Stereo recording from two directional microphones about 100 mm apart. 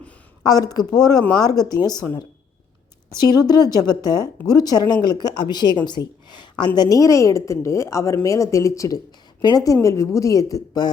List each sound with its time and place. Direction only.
0.4 s a woman's voice: 40° left (ahead or behind)
6.7 s a woman's voice: 35° left (ahead or behind)